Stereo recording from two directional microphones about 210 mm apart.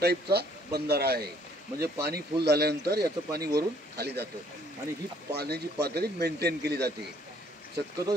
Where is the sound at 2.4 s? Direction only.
50° right (ahead or behind).